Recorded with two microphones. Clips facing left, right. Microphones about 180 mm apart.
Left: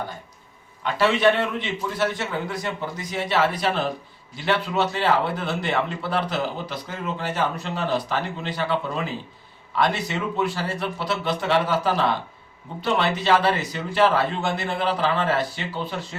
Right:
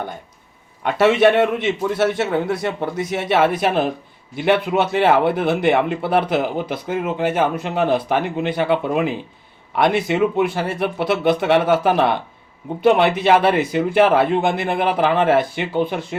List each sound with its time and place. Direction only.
0.8 s a man's voice: 55° right (ahead or behind)